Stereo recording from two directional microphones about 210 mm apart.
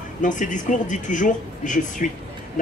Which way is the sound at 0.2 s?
35° left (ahead or behind).